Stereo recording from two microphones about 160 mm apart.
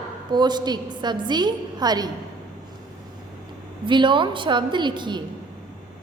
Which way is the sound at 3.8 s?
30° right (ahead or behind).